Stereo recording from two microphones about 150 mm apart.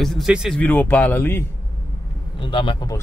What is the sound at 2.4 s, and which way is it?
Speech, 35° left (ahead or behind).